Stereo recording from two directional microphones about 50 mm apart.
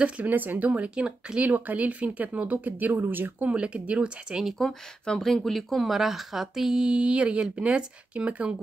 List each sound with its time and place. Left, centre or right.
0.2 s speech: right; by 1.4 s centre
1.4 s a woman's voice: right
3.4 s speech: right
4.6 s speech: centre; by 8.5 s right